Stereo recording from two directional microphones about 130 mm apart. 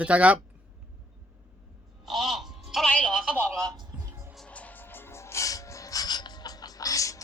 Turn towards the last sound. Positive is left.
turn(degrees=25)  # may be behind; listen again after turning